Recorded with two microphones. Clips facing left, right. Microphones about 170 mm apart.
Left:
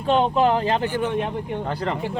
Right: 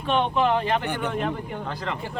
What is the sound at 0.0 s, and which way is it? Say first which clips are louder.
Speech: left 4 dB; 35° left (ahead or behind).